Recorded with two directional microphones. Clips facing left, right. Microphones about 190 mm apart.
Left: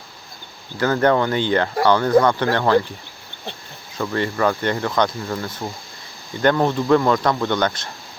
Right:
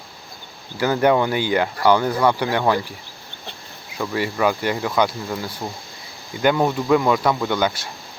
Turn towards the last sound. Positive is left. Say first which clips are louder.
# even
turn(degrees=-5)  # may be behind; listen again after turning